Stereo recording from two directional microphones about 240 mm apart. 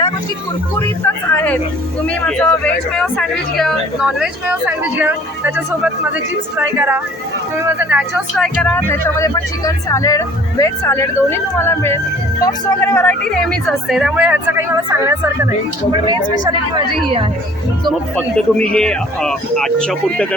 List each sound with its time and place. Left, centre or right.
0.8 s a woman's voice: centre; by 17.2 s right
18.3 s speech: centre